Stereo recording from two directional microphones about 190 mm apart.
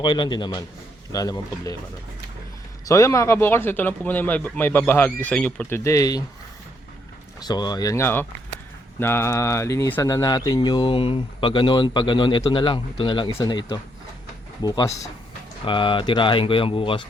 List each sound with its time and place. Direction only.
0.0 s speech: 25° left (ahead or behind)
2.8 s a man's voice: 15° left (ahead or behind)
7.4 s a man's voice: 20° left (ahead or behind)